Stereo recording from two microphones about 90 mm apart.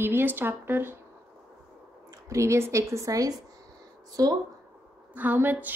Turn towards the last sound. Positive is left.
turn(degrees=-20)  # may be behind; listen again after turning